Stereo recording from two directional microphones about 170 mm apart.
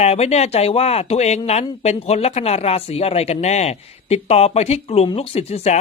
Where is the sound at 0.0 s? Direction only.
40° left (ahead or behind).